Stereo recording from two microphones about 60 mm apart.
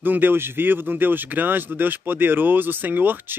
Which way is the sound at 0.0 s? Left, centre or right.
Right.